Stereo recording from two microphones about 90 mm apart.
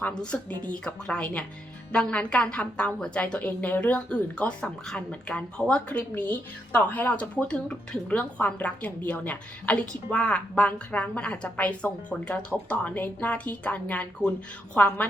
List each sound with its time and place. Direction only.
0.0 s a woman's voice: 10° left (ahead or behind)